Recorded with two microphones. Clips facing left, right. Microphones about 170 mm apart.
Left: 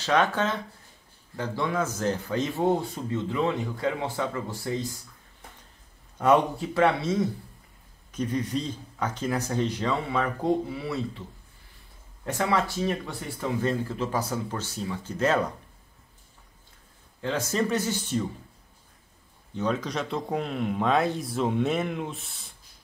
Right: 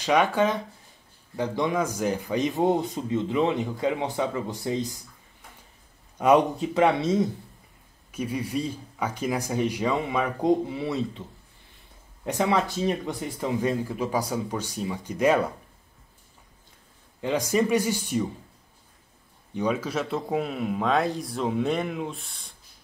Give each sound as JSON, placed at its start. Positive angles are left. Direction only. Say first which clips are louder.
{"t": 0.0, "sound": "a man's voice", "louder": "right 2 dB", "side_deg": -10}
{"t": 6.1, "sound": "a man's voice", "louder": "right 2 dB", "side_deg": -15}
{"t": 8.1, "sound": "a man's voice", "louder": "left 1 dB", "side_deg": -10}
{"t": 12.3, "sound": "a man's voice", "louder": "right 2 dB", "side_deg": -15}
{"t": 17.2, "sound": "a man's voice", "louder": "right 3 dB", "side_deg": -15}
{"t": 19.5, "sound": "speech", "louder": "right 2 dB", "side_deg": -10}